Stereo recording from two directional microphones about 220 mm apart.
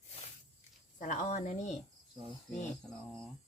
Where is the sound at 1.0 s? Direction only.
35° left (ahead or behind).